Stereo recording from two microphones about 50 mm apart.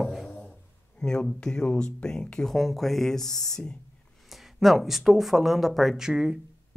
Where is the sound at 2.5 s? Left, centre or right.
Centre.